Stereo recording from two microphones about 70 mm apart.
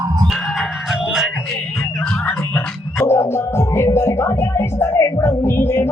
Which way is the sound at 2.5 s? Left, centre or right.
Left.